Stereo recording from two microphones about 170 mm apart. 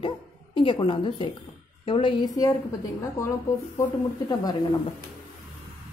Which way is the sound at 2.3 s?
15° left (ahead or behind).